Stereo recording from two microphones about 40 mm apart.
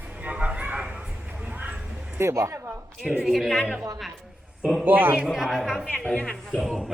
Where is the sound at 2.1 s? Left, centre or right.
Right.